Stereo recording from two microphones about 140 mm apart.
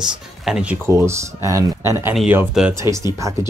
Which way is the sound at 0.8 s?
20° right (ahead or behind).